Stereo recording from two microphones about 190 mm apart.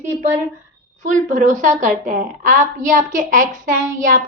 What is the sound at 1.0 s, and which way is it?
A child's voice, 45° right (ahead or behind).